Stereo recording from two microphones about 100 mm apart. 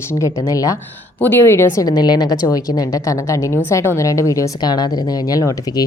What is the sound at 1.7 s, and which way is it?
A woman's voice, 40° left (ahead or behind).